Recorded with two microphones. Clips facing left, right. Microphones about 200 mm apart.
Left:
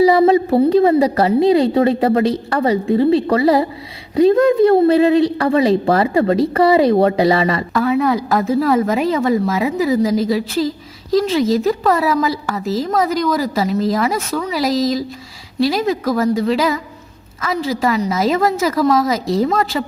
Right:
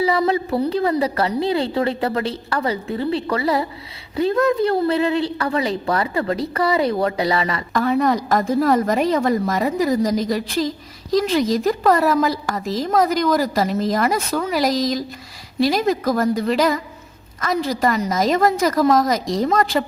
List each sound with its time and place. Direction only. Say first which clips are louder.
0.3 s a woman's voice: left 7 dB; 25° left (ahead or behind)
7.7 s a woman's voice: even; centre (ahead or behind)